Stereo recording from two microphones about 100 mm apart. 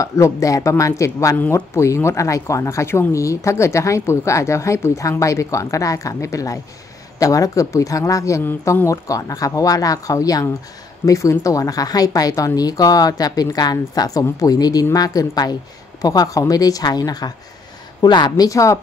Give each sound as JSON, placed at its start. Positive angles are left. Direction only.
{"t": 0.0, "sound": "a woman's voice", "side_deg": 30}
{"t": 18.5, "sound": "speech", "side_deg": 35}